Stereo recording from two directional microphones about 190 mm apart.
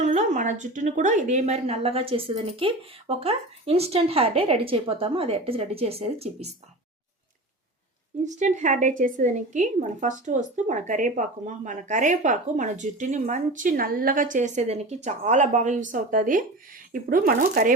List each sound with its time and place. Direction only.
0.0 s a woman's voice: 40° right (ahead or behind)
8.2 s a woman's voice: 40° right (ahead or behind)